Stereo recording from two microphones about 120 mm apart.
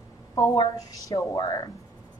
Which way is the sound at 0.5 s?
35° left (ahead or behind).